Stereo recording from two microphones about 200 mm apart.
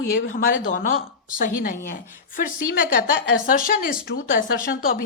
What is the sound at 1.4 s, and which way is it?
Speech, 45° left (ahead or behind).